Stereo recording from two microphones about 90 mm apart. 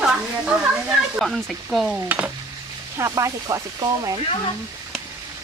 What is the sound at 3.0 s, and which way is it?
Speech, 35° right (ahead or behind).